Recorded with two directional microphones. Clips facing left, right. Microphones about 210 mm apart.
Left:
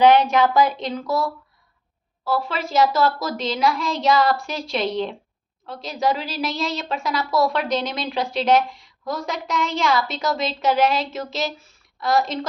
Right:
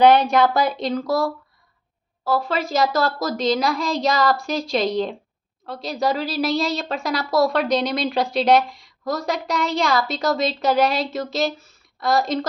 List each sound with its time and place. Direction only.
0.0 s a child's voice: 35° right (ahead or behind)